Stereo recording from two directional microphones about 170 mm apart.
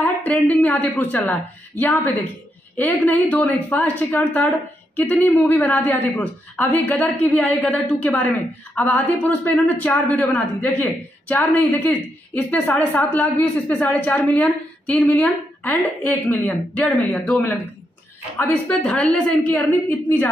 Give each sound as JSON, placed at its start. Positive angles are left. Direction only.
{"t": 0.0, "sound": "a woman's voice", "side_deg": 10}